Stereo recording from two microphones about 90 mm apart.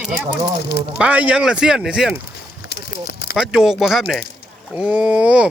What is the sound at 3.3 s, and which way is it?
Speech, 5° right (ahead or behind).